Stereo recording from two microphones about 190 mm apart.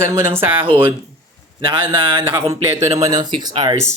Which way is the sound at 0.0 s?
15° right (ahead or behind).